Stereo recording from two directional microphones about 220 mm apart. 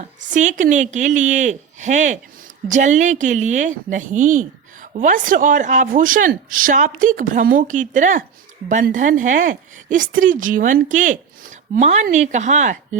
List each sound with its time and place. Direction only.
0.3 s speech: 35° right (ahead or behind)